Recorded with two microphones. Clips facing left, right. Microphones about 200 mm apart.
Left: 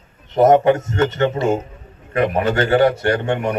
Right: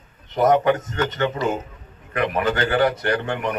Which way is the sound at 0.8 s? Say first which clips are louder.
Left 5 dB; 25° left (ahead or behind).